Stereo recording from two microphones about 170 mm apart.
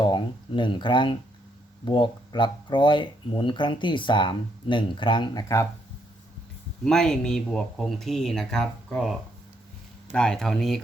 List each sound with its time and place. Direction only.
0.0 s speech: 25° left (ahead or behind)
6.8 s speech: 5° left (ahead or behind)